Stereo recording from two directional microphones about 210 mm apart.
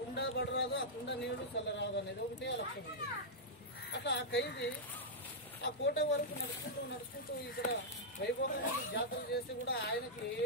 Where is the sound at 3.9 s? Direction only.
55° left (ahead or behind).